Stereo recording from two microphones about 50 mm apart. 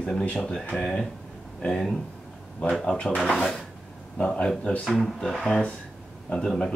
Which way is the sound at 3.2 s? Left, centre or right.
Centre.